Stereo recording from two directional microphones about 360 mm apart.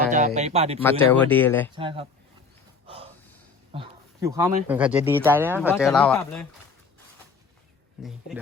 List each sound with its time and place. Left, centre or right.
0.3 s speech: centre
0.8 s speech: centre
1.7 s speech: centre
3.7 s speech: centre